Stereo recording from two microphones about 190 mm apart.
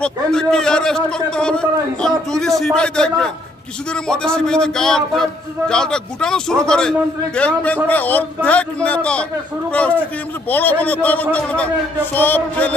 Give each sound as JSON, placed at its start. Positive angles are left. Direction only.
{"t": 0.0, "sound": "a man's voice", "side_deg": 5}